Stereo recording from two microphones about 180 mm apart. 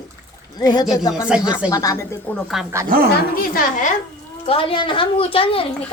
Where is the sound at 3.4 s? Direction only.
45° left (ahead or behind).